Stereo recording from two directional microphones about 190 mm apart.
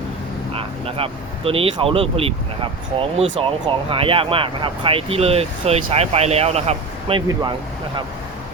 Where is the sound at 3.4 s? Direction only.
30° right (ahead or behind).